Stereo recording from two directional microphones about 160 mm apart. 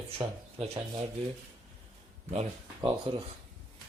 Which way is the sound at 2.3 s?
40° right (ahead or behind).